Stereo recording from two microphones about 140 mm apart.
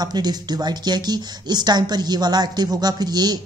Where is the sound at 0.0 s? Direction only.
30° right (ahead or behind).